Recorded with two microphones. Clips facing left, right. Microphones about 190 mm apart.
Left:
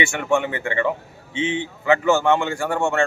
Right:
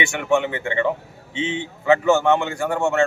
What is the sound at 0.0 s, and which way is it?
A man's voice, 20° right (ahead or behind).